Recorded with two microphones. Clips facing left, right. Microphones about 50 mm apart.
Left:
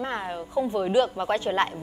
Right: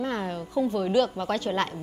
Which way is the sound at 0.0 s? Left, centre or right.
Centre.